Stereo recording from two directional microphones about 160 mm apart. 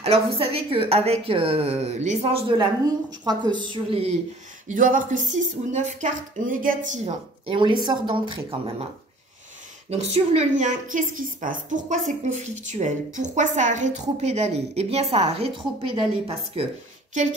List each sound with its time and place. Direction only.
0.0 s a woman's voice: 35° right (ahead or behind)
4.6 s a woman's voice: 55° right (ahead or behind)
7.4 s speech: 30° right (ahead or behind)
9.8 s a woman's voice: 45° right (ahead or behind)